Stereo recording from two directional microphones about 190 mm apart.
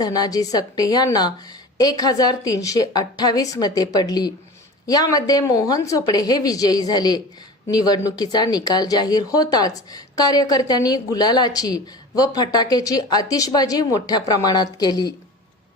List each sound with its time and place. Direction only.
0.0 s speech: 20° left (ahead or behind)